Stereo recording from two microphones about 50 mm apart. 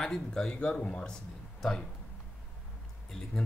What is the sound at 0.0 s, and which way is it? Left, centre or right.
Speech, centre.